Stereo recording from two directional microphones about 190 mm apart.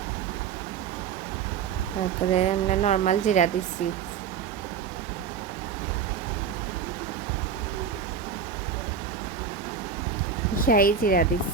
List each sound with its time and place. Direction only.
2.3 s speech: 35° left (ahead or behind)
10.7 s speech: 50° left (ahead or behind)